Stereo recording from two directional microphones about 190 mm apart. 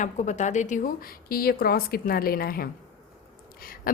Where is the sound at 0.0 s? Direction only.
40° left (ahead or behind).